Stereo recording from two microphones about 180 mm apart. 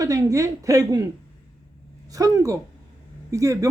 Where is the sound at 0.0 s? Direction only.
20° right (ahead or behind).